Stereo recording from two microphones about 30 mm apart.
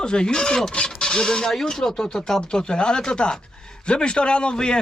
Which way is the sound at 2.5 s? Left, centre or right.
Left.